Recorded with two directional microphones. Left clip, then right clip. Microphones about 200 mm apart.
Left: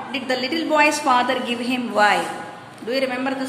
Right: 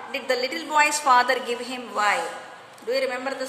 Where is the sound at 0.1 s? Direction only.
20° right (ahead or behind).